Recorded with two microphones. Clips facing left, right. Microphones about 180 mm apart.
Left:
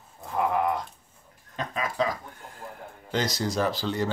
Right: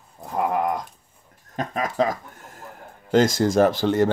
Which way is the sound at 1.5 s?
45° right (ahead or behind).